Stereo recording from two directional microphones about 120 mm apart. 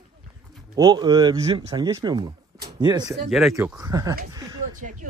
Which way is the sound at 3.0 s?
Centre (ahead or behind).